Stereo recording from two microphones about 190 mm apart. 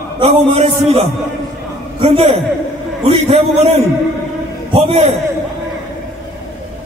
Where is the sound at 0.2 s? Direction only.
30° right (ahead or behind).